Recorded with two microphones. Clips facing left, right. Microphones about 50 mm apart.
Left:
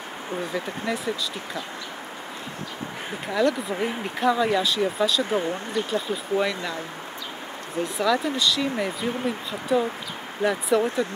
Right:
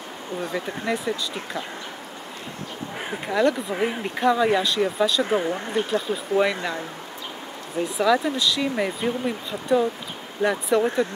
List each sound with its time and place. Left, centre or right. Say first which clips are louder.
0.8 s speech: right 3 dB; centre
3.3 s speech: right 1 dB; centre
6.5 s speech: right 2 dB; centre
8.0 s speech: right 2 dB; centre
9.5 s speech: right 3 dB; centre